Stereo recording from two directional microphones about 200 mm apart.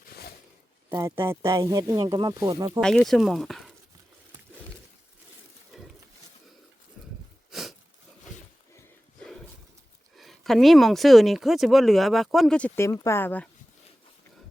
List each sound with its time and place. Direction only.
0.9 s speech: 15° right (ahead or behind)
2.8 s speech: centre (ahead or behind)
7.5 s a sound: centre (ahead or behind)
10.2 s speech: centre (ahead or behind)